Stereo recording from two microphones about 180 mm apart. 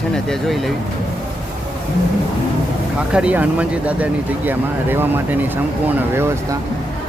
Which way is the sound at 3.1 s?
5° right (ahead or behind).